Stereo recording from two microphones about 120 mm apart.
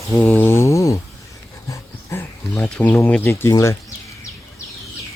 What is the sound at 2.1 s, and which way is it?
Speech, 15° left (ahead or behind).